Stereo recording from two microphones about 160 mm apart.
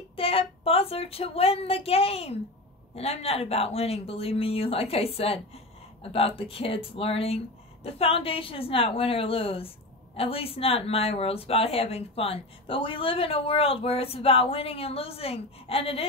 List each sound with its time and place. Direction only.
0.1 s speech: 35° left (ahead or behind)